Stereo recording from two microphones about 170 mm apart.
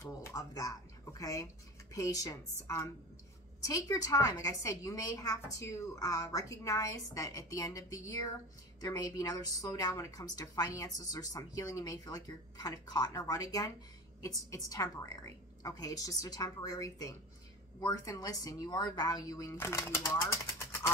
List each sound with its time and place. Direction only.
0.0 s a woman's voice: 20° left (ahead or behind)